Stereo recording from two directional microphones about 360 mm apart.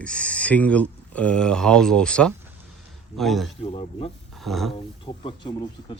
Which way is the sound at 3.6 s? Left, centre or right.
Centre.